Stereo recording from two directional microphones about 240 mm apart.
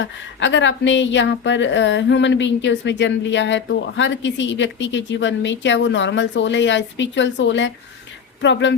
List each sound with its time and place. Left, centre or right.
0.0 s speech: left